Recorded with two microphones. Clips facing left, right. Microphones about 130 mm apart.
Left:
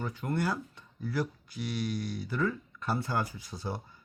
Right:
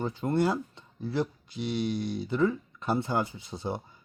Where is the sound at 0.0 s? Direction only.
25° right (ahead or behind).